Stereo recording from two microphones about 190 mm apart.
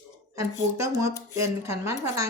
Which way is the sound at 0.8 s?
15° right (ahead or behind).